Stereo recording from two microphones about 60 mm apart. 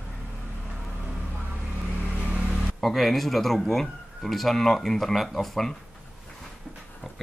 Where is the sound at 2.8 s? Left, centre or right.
Centre.